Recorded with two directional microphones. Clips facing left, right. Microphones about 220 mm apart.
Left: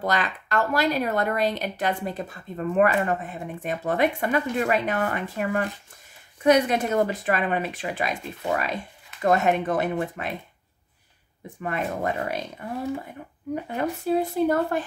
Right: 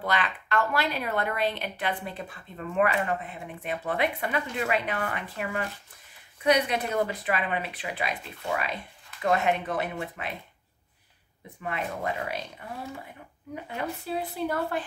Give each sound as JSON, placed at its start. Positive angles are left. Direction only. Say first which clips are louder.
{"t": 0.0, "sound": "speech", "louder": "left 3 dB", "side_deg": 40}
{"t": 11.4, "sound": "speech", "louder": "left 5 dB", "side_deg": 45}
{"t": 13.7, "sound": "speech", "louder": "left 8 dB", "side_deg": 45}